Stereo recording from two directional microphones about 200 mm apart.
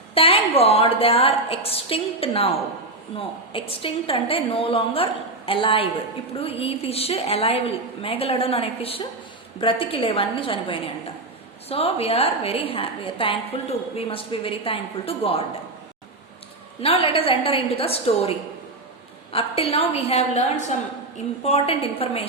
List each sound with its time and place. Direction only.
0.1 s a woman's voice: 30° left (ahead or behind)
16.8 s a woman's voice: 30° left (ahead or behind)